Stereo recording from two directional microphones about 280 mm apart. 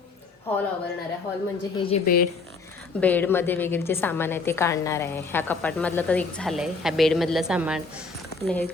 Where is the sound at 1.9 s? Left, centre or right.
Left.